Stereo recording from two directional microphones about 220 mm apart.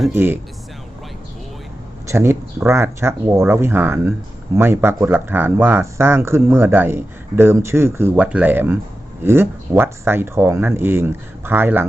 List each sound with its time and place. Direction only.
0.1 s speech: 10° right (ahead or behind)
2.0 s speech: 10° right (ahead or behind)